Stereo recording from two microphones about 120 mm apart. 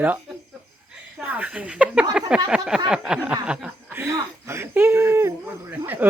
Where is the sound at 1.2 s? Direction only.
10° right (ahead or behind).